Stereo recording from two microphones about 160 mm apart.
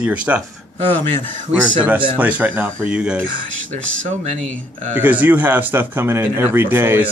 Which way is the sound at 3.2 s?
50° right (ahead or behind).